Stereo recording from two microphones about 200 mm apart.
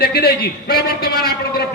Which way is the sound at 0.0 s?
50° left (ahead or behind).